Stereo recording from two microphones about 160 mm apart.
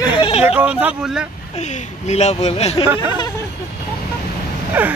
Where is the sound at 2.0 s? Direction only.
45° left (ahead or behind).